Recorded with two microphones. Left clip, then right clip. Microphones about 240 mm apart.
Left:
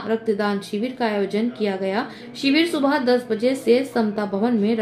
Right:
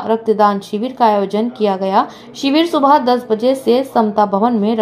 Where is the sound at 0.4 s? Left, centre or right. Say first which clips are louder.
Right 10 dB; centre.